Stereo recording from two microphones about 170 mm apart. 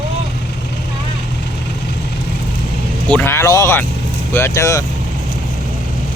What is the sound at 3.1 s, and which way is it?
Speech, 10° left (ahead or behind).